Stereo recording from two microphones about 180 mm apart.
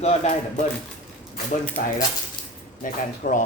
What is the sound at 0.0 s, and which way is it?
Speech, 35° left (ahead or behind).